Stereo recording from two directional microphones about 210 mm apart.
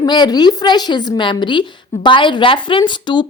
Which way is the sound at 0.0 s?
20° left (ahead or behind).